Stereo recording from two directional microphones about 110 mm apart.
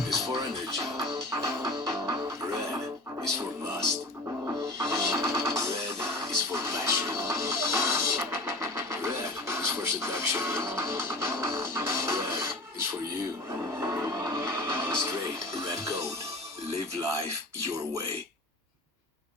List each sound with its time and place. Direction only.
0.2 s speech: 30° right (ahead or behind)
1.1 s music: 30° right (ahead or behind)
4.4 s music: 25° right (ahead or behind)
13.7 s music: 25° right (ahead or behind)